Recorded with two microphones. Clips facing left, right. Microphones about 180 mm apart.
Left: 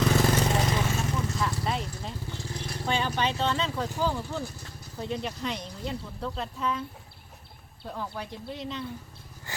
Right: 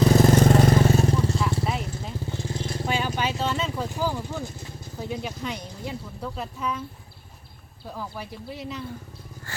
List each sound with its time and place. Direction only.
0.0 s vehicle: 40° right (ahead or behind)
1.6 s vehicle: centre (ahead or behind)
2.5 s vehicle: 25° right (ahead or behind)
2.8 s vehicle: 5° right (ahead or behind)
3.8 s speech: 15° right (ahead or behind)
4.9 s speech: centre (ahead or behind)
7.9 s speech: 5° right (ahead or behind)
9.5 s a sound: 15° left (ahead or behind)